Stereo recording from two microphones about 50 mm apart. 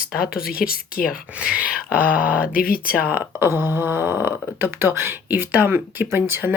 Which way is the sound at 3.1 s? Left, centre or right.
Right.